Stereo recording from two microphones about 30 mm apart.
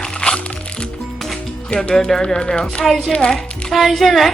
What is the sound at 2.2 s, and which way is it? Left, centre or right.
Speech, left.